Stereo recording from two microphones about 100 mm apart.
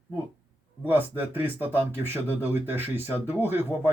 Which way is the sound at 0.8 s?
20° right (ahead or behind).